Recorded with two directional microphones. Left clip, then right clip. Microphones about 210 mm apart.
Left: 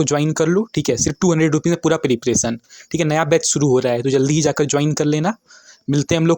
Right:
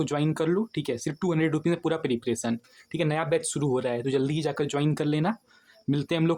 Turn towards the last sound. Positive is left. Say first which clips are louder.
# left 9 dB
turn(degrees=30)  # may be behind; listen again after turning